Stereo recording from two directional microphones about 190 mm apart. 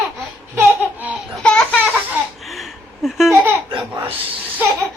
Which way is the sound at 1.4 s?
5° left (ahead or behind).